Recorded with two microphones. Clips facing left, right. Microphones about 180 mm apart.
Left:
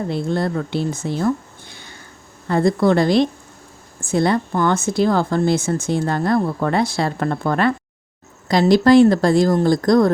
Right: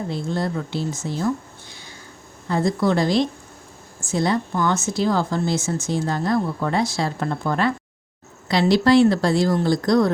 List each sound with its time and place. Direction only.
0.1 s speech: 60° left (ahead or behind)
8.4 s speech: 45° left (ahead or behind)